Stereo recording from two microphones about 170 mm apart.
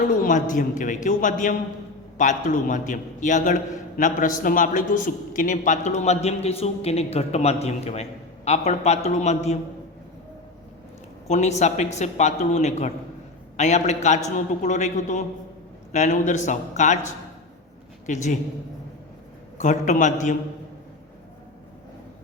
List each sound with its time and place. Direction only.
0.1 s a man's voice: 50° left (ahead or behind)
11.3 s a man's voice: 40° left (ahead or behind)
18.0 s a woman's voice: 45° left (ahead or behind)
19.5 s a man's voice: 45° left (ahead or behind)